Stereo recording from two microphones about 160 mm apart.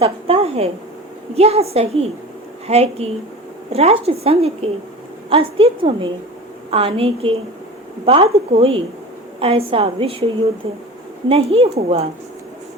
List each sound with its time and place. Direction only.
0.0 s a woman's voice: 40° right (ahead or behind)
11.3 s a woman's voice: 40° right (ahead or behind)